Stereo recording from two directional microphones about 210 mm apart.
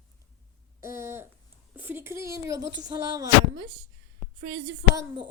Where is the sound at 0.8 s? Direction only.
15° right (ahead or behind).